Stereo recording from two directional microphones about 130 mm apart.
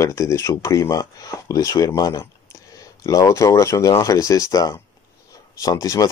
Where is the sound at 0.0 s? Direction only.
25° left (ahead or behind).